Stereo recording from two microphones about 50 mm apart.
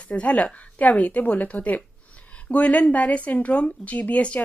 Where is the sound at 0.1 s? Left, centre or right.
Left.